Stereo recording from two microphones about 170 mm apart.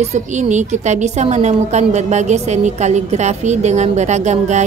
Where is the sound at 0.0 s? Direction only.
40° right (ahead or behind).